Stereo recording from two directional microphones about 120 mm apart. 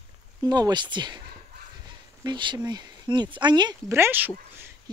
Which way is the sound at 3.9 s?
20° right (ahead or behind).